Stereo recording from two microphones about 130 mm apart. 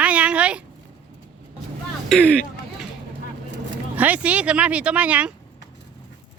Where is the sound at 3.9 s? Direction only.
10° right (ahead or behind).